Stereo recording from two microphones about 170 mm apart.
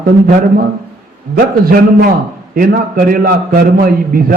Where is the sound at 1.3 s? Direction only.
60° right (ahead or behind).